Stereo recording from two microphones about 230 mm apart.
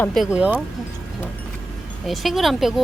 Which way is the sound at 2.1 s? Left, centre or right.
Centre.